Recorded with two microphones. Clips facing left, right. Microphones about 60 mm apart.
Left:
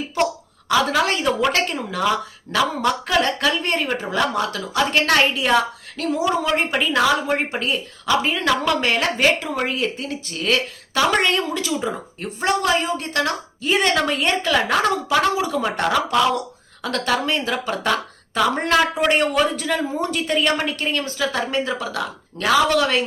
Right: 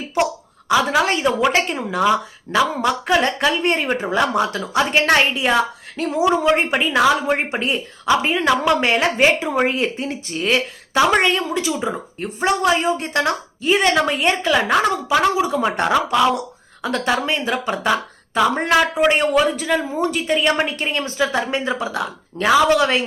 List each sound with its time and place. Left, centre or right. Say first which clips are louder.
0.7 s a woman's voice: right 2 dB; centre
11.2 s a woman's voice: right 2 dB; centre
13.6 s a woman's voice: right 2 dB; centre